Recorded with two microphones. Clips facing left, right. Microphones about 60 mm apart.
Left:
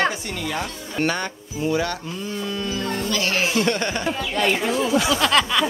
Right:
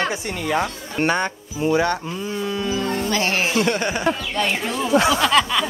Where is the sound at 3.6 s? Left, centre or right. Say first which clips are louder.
Right 2 dB; centre.